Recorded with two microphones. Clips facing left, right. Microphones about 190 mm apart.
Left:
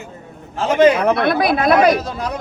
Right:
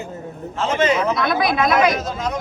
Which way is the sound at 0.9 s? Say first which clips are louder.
Left 4 dB; 60° left (ahead or behind).